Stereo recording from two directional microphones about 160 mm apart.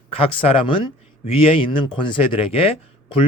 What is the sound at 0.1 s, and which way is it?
Speech, 35° left (ahead or behind).